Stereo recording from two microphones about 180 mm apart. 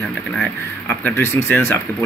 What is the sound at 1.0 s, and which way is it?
Speech, 10° left (ahead or behind).